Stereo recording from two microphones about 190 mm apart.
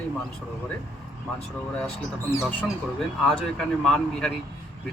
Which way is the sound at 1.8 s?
10° left (ahead or behind).